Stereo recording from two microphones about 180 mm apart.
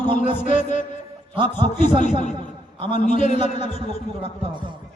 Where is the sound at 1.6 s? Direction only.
40° left (ahead or behind).